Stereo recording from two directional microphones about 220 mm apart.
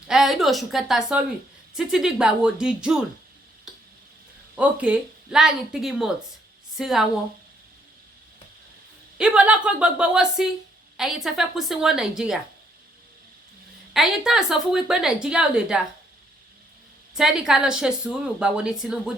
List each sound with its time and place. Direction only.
0.1 s a woman's voice: centre (ahead or behind)
4.5 s a woman's voice: 5° right (ahead or behind)
9.1 s a woman's voice: 5° right (ahead or behind)
13.9 s a woman's voice: centre (ahead or behind)
17.2 s a woman's voice: centre (ahead or behind)